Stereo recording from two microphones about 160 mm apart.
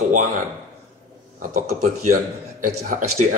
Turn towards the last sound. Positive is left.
turn(degrees=-50)  # may be behind; listen again after turning